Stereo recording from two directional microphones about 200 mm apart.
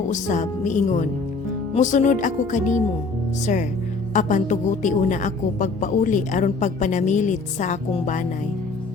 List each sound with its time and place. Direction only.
0.1 s a woman's voice: 40° left (ahead or behind)